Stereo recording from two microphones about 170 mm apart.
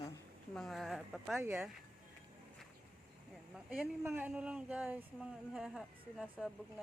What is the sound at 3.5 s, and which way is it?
Speech, 5° right (ahead or behind).